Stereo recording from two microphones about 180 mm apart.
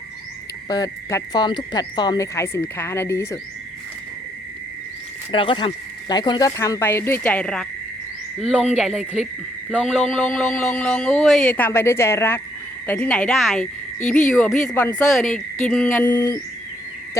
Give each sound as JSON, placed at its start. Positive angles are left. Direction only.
{"t": 0.7, "sound": "speech", "side_deg": 20}
{"t": 5.3, "sound": "speech", "side_deg": 30}